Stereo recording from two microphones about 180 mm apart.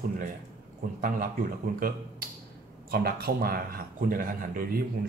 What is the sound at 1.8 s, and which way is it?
A man's voice, 50° right (ahead or behind).